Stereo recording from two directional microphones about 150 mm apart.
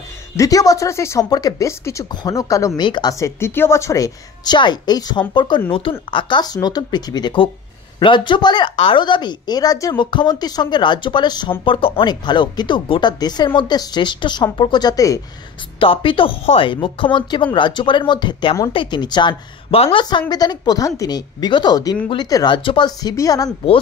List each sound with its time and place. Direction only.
0.4 s speech: 25° left (ahead or behind)
15.8 s speech: 35° left (ahead or behind)